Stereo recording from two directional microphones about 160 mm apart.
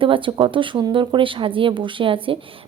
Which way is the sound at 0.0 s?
30° right (ahead or behind).